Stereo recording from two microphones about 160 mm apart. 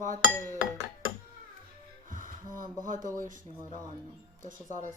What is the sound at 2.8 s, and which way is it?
Speech, 55° right (ahead or behind).